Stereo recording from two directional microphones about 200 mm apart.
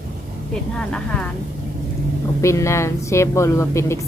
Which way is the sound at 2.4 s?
15° left (ahead or behind).